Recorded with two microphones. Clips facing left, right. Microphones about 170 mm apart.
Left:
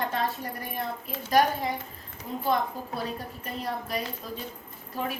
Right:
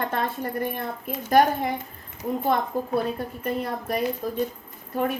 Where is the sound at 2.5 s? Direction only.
55° right (ahead or behind).